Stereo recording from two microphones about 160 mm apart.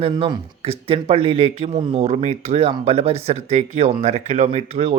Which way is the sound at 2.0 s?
45° right (ahead or behind).